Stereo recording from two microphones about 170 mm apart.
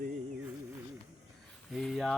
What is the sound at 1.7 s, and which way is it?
Speech, centre (ahead or behind).